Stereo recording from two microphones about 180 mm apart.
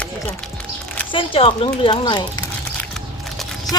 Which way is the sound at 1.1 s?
30° left (ahead or behind).